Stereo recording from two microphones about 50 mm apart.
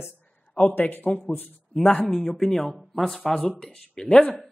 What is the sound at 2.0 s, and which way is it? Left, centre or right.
Speech, centre.